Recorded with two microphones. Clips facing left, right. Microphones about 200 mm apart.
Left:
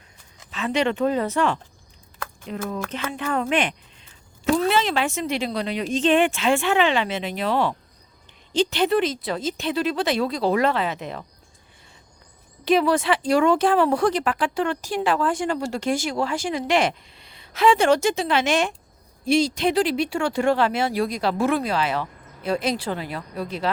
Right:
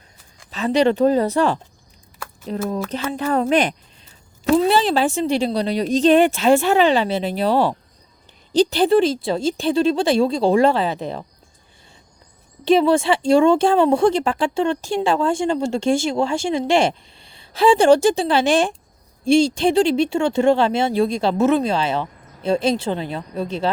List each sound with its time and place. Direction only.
0.5 s speech: 35° right (ahead or behind)
12.6 s speech: 25° right (ahead or behind)